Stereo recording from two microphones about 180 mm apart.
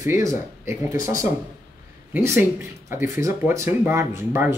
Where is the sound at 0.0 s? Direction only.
15° right (ahead or behind).